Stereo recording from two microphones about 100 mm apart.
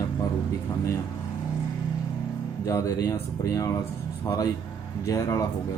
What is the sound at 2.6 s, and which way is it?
A man's voice, 35° left (ahead or behind).